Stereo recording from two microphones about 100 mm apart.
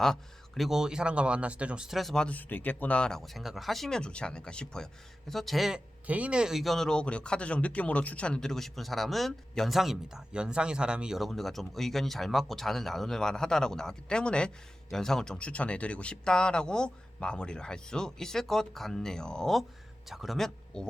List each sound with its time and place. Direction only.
0.0 s a man's voice: 5° left (ahead or behind)
6.1 s a man's voice: 15° right (ahead or behind); by 20.8 s 5° left (ahead or behind)